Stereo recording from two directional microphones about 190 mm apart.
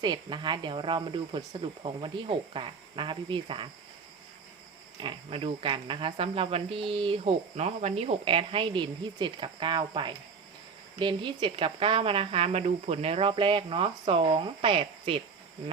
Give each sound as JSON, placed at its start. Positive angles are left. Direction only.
{"t": 0.0, "sound": "speech", "side_deg": -25}
{"t": 4.9, "sound": "speech", "side_deg": -25}